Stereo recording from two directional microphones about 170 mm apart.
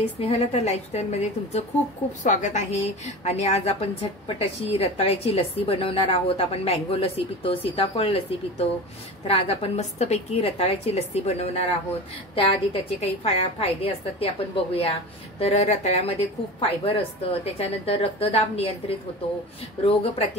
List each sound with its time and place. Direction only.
0.2 s a woman's voice: 35° left (ahead or behind)